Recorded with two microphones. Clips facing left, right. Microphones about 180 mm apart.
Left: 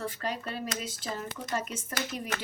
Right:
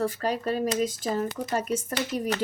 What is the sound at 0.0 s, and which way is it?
Speech, 40° right (ahead or behind).